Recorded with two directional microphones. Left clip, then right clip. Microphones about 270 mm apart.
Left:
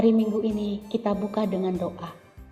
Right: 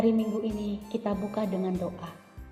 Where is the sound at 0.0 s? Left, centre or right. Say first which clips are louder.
Left 5 dB; left.